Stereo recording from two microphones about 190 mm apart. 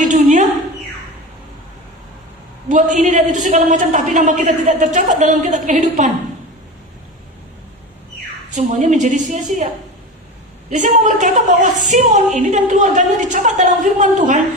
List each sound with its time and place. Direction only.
0.0 s a sound: 40° right (ahead or behind)
2.6 s a man's voice: 40° right (ahead or behind)
8.5 s a man's voice: 40° right (ahead or behind)
10.7 s a man's voice: 40° right (ahead or behind)